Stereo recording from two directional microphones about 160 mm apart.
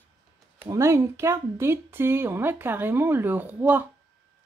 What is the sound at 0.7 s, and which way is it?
Speech, 20° right (ahead or behind).